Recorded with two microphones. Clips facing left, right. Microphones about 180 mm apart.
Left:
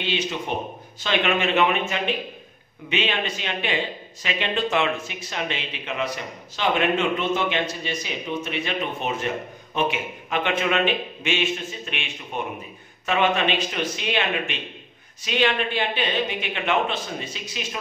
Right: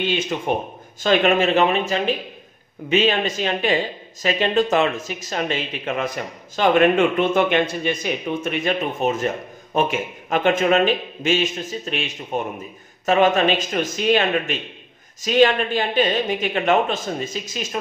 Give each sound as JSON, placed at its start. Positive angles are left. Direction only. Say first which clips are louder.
{"t": 0.0, "sound": "a man's voice", "louder": "right 4 dB", "side_deg": -50}